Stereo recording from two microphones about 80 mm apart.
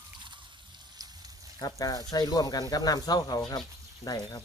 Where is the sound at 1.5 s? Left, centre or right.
Left.